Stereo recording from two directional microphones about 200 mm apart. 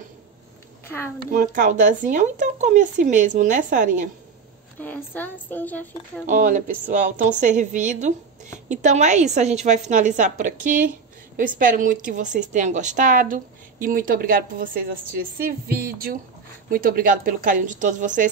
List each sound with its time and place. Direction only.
0.8 s a woman's voice: 10° left (ahead or behind)
1.3 s speech: 40° right (ahead or behind)
4.7 s a woman's voice: 10° left (ahead or behind)
6.2 s a woman's voice: 40° right (ahead or behind)